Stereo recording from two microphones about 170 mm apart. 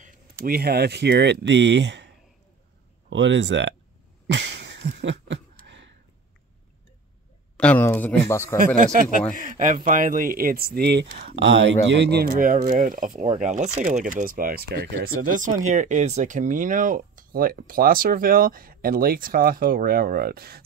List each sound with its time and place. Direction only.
0.0 s speech: 65° right (ahead or behind); by 3.7 s 90° right
4.3 s a sound: 90° right
7.5 s speech: 10° left (ahead or behind)
8.7 s speech: 50° right (ahead or behind); by 15.0 s 65° right (ahead or behind)
15.2 s speech: 50° right (ahead or behind); by 20.6 s 65° right (ahead or behind)